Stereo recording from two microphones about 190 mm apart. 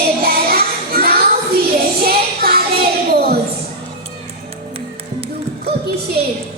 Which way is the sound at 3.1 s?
55° right (ahead or behind).